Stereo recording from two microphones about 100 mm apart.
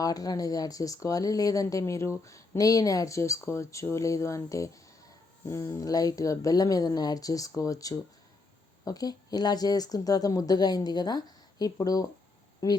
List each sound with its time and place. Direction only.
0.0 s speech: 40° left (ahead or behind)